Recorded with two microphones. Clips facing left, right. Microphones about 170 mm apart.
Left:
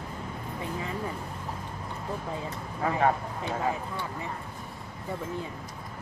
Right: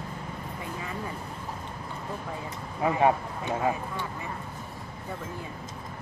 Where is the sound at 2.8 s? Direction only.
15° right (ahead or behind).